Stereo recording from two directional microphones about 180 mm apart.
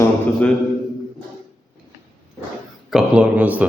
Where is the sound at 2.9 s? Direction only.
5° right (ahead or behind).